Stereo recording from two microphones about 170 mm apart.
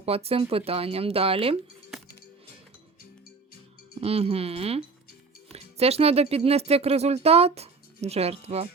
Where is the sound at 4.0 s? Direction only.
35° right (ahead or behind).